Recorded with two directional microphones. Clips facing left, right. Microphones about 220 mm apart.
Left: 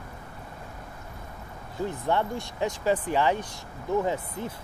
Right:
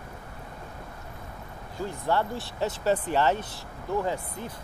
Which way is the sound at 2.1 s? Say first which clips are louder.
Right 2 dB; 20° left (ahead or behind).